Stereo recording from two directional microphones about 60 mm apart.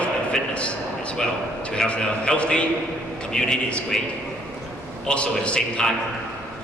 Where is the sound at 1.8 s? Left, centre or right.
Centre.